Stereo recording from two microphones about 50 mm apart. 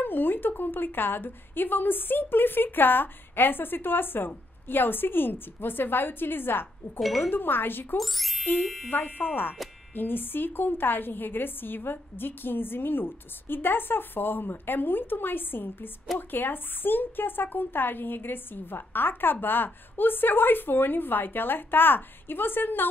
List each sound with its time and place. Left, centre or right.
0.0 s a woman's voice: left
7.0 s speech: centre
7.2 s a woman's voice: left
8.0 s speech: centre
8.8 s a woman's voice: left